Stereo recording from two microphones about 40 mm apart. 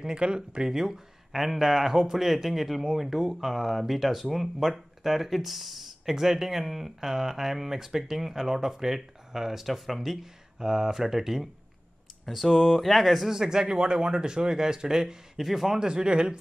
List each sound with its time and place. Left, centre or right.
0.0 s speech: right
0.7 s speech: centre
10.2 s speech: centre
13.3 s speech: centre
15.3 s speech: centre; by 16.3 s right